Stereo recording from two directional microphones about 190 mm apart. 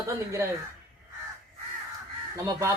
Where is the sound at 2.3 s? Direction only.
15° right (ahead or behind).